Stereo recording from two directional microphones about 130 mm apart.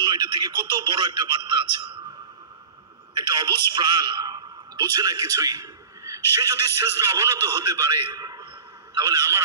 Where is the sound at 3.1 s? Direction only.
35° right (ahead or behind).